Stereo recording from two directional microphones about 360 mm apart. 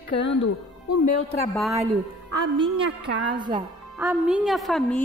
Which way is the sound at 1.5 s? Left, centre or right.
Centre.